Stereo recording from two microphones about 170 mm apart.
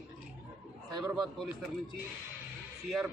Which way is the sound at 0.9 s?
25° right (ahead or behind).